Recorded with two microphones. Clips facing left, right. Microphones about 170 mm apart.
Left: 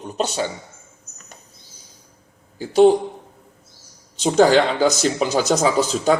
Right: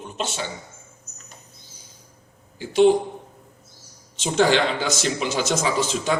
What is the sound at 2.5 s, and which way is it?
Speech, 40° left (ahead or behind).